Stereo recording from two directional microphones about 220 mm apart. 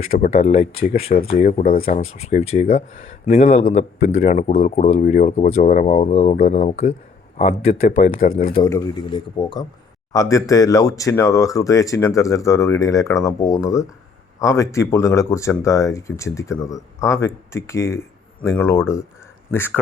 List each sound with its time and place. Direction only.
0.0 s speech: 30° left (ahead or behind)
1.5 s speech: 40° left (ahead or behind)
8.5 s speech: 20° left (ahead or behind)